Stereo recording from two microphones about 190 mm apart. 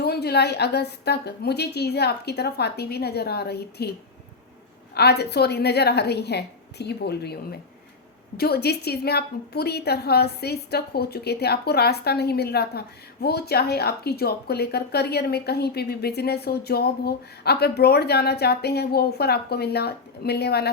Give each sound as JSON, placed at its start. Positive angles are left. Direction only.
{"t": 0.0, "sound": "a woman's voice", "side_deg": 55}
{"t": 4.9, "sound": "a woman's voice", "side_deg": 60}
{"t": 8.4, "sound": "a woman's voice", "side_deg": 55}